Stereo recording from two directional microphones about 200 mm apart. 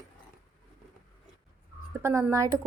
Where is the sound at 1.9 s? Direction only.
10° right (ahead or behind).